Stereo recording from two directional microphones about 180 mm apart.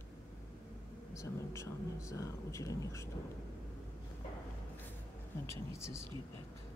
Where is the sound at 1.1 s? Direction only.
15° left (ahead or behind).